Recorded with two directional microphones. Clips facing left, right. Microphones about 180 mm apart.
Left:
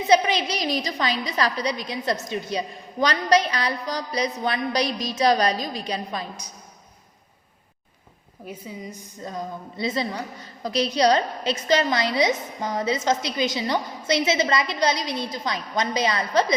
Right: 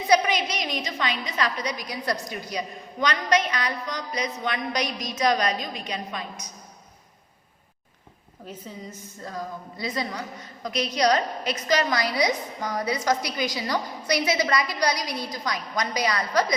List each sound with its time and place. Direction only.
0.1 s a woman's voice: 30° left (ahead or behind)
8.4 s a woman's voice: 10° left (ahead or behind); by 16.6 s 25° left (ahead or behind)